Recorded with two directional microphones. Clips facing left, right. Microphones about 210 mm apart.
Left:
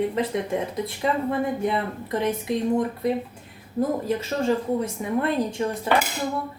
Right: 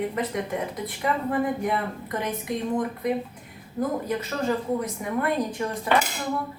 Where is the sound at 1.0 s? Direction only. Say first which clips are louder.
Left 2 dB; 25° left (ahead or behind).